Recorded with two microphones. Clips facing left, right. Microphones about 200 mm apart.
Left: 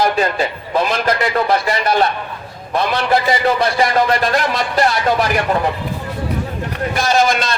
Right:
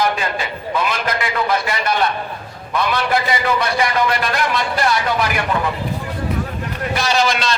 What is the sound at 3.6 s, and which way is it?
Speech, 35° left (ahead or behind).